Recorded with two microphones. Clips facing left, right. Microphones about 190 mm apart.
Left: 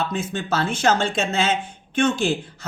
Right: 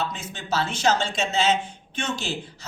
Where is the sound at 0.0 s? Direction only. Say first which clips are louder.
Left 6 dB; 55° left (ahead or behind).